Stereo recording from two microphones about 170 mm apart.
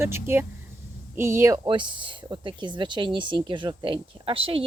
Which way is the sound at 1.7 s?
30° right (ahead or behind).